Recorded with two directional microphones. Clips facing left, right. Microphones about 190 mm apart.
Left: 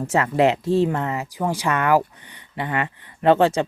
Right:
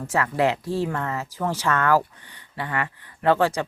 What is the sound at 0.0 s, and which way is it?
Speech, 25° left (ahead or behind).